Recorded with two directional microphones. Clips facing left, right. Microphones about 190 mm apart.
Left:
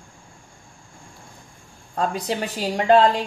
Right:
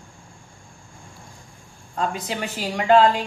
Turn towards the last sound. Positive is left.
turn(degrees=35)  # may be behind; listen again after turning